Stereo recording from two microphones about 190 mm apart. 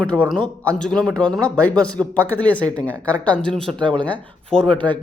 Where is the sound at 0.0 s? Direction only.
5° left (ahead or behind).